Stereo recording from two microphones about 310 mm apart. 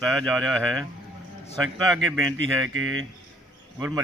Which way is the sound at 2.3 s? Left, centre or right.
Right.